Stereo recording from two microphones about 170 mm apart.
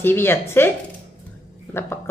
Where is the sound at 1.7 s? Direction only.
15° left (ahead or behind).